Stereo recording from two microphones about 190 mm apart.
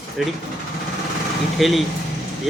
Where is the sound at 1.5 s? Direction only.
Centre (ahead or behind).